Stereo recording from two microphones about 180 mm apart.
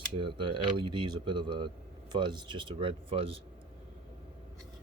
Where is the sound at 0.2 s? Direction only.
25° right (ahead or behind).